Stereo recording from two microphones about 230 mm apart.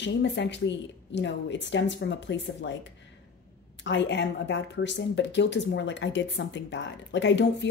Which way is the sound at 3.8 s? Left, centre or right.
Left.